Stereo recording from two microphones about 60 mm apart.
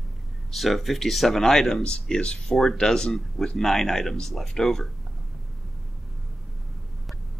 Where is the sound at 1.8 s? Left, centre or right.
Centre.